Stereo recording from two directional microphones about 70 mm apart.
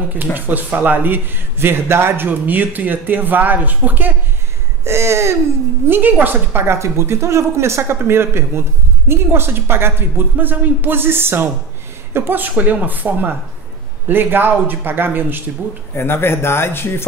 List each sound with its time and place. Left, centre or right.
0.2 s a man's voice: right
4.8 s a sound: right
5.9 s a woman's voice: right
15.9 s speech: left